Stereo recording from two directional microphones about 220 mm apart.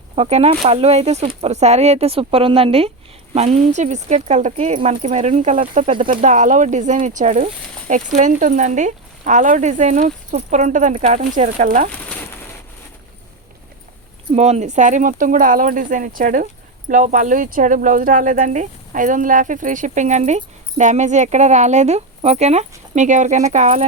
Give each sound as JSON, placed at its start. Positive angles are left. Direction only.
{"t": 0.2, "sound": "speech", "side_deg": -30}
{"t": 11.9, "sound": "a sound", "side_deg": 5}
{"t": 14.3, "sound": "speech", "side_deg": -30}